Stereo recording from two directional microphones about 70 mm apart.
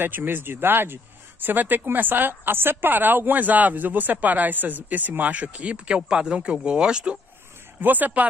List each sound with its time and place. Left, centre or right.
0.0 s speech: right; by 7.2 s centre
7.8 s speech: right